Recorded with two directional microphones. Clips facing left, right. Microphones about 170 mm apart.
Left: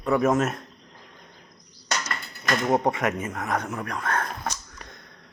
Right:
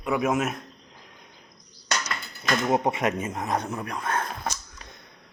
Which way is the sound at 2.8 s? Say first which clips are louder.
Even; 25° right (ahead or behind).